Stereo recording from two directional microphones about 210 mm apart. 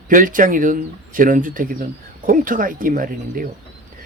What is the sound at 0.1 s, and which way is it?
Speech, 40° right (ahead or behind).